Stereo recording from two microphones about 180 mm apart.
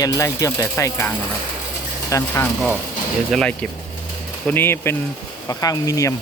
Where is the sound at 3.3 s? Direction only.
Centre (ahead or behind); by 6.1 s 20° left (ahead or behind).